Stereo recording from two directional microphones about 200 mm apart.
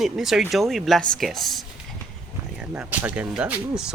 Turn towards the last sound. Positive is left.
turn(degrees=-5)  # may be behind; listen again after turning